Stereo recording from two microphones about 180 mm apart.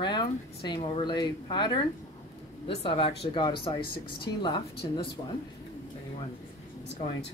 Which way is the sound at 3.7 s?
60° left (ahead or behind).